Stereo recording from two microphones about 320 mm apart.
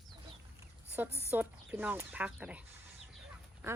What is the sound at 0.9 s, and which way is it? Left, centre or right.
Speech, centre.